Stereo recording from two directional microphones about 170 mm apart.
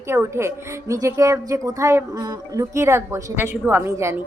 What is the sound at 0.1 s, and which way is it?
Speech, 15° right (ahead or behind).